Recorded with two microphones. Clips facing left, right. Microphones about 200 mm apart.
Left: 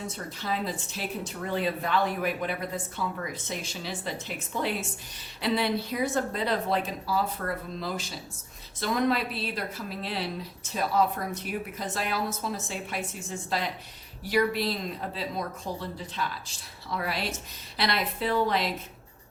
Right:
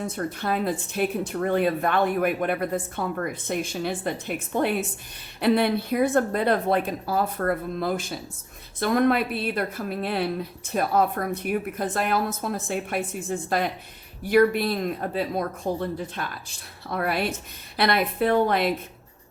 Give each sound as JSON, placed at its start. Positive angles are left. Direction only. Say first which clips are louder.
{"t": 0.0, "sound": "speech", "louder": "right 7 dB", "side_deg": -55}